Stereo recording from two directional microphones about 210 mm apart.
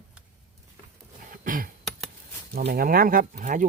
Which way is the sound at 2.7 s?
45° right (ahead or behind).